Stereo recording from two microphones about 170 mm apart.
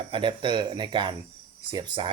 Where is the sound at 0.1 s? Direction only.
30° right (ahead or behind).